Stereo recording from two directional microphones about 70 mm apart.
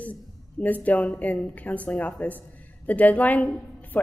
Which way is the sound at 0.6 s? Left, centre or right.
Left.